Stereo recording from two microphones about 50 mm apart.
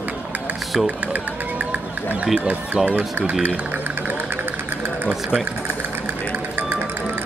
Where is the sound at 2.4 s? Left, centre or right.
Right.